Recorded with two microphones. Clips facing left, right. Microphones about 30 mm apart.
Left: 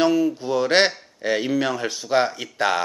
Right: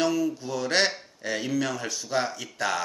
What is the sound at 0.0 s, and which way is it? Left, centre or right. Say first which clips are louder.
Speech: left 6 dB; left.